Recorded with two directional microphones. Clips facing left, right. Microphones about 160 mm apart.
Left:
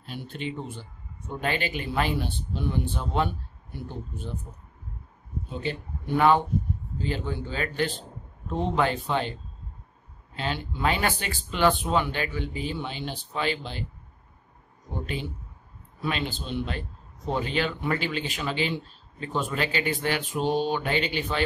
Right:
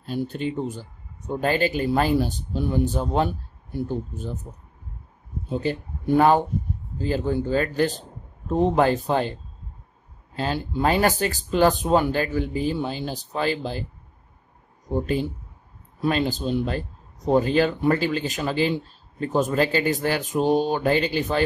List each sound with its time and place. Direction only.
0.0 s a man's voice: 40° right (ahead or behind)
5.5 s a man's voice: 40° right (ahead or behind)
10.3 s a man's voice: 40° right (ahead or behind)
15.0 s a man's voice: 40° right (ahead or behind)